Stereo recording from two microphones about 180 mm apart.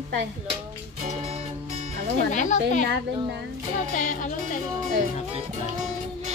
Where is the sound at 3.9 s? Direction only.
45° left (ahead or behind).